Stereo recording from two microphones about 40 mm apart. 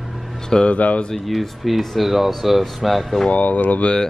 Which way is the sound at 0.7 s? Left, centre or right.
Left.